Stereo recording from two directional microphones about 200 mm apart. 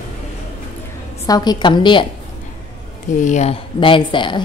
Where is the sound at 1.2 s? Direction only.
20° left (ahead or behind).